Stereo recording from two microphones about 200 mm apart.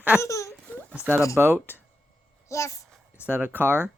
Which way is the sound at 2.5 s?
15° left (ahead or behind).